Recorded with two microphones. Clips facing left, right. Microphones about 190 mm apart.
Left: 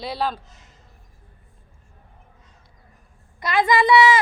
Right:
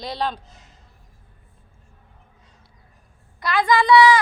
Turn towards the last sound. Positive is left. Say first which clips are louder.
# right 1 dB
turn(degrees=25)  # may be behind; listen again after turning